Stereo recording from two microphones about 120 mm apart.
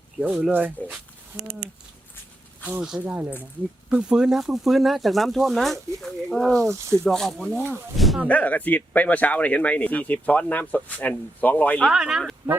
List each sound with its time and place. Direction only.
0.2 s speech: 5° right (ahead or behind)
2.6 s speech: 15° right (ahead or behind); by 7.5 s centre (ahead or behind)
7.5 s speech: 20° right (ahead or behind)
7.9 s a sound: centre (ahead or behind)
8.3 s speech: 10° left (ahead or behind)
11.8 s speech: 5° right (ahead or behind)
12.4 s speech: 15° right (ahead or behind)